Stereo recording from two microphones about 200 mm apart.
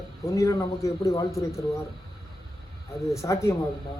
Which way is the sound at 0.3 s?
15° left (ahead or behind).